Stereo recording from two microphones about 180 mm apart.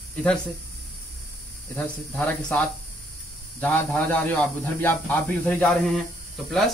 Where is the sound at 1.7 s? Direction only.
5° left (ahead or behind).